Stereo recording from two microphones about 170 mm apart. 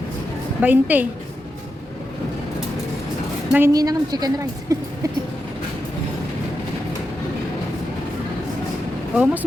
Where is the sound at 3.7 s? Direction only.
20° right (ahead or behind).